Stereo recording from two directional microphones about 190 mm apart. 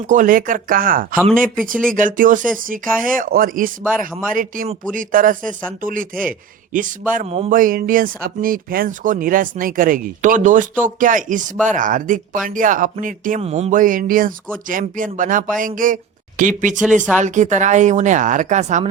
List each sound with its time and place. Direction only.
0.1 s a woman's voice: 45° right (ahead or behind)